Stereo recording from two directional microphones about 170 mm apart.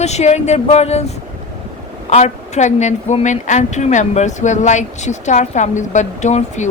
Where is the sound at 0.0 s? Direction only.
40° left (ahead or behind).